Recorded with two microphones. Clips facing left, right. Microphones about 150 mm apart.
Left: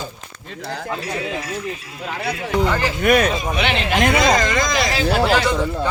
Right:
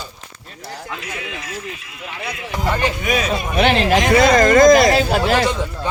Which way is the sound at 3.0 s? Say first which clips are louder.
Left 4 dB; 60° left (ahead or behind).